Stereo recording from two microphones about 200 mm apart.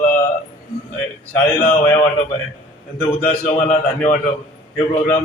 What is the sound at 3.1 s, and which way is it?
A man's voice, 25° left (ahead or behind).